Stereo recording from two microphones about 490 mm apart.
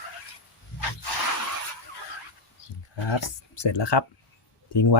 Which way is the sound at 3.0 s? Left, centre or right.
Left.